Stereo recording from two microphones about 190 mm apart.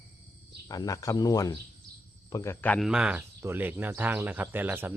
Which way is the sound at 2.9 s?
5° right (ahead or behind).